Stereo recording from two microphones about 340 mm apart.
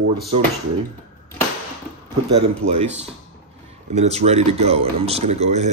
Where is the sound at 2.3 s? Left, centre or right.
Centre.